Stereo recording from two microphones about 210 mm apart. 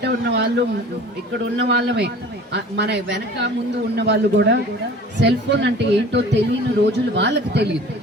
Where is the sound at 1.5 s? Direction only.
55° right (ahead or behind).